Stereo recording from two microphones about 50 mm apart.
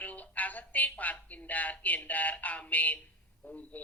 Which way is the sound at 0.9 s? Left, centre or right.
Left.